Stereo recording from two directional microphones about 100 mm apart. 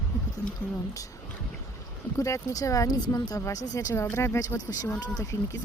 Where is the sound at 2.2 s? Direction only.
35° left (ahead or behind).